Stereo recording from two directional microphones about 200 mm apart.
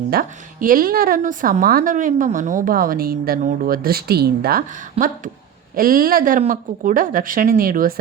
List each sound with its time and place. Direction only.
0.1 s a woman's voice: 45° right (ahead or behind)